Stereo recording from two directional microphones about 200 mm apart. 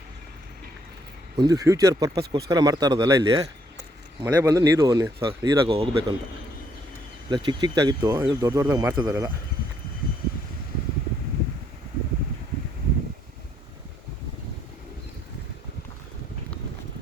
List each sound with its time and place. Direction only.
1.4 s speech: 15° right (ahead or behind)
7.3 s speech: 25° right (ahead or behind)